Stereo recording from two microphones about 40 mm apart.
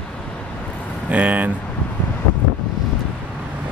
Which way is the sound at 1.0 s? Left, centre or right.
Right.